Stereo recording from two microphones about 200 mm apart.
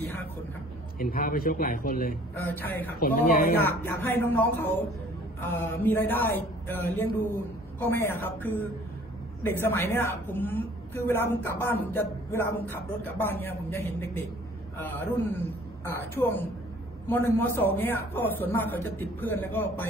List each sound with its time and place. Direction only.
0.0 s a sound: 10° left (ahead or behind)
0.9 s a man's voice: 45° left (ahead or behind)
3.6 s a woman's voice: 10° left (ahead or behind)